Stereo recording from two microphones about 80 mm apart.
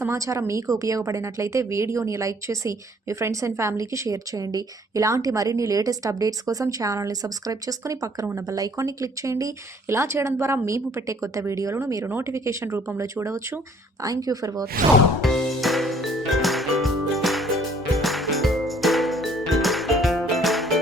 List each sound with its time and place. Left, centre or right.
0.0 s a woman's voice: right
14.0 s a woman's voice: right
15.2 s music: centre